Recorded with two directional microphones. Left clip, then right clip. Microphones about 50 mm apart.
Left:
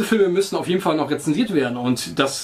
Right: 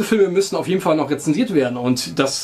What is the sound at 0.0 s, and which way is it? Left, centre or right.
Speech, right.